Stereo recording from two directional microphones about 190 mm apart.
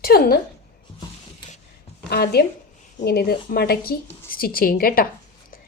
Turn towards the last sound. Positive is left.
turn(degrees=50)  # may be behind; listen again after turning